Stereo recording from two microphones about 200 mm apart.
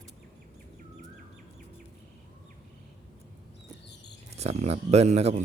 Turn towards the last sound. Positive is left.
turn(degrees=-35)  # may be behind; listen again after turning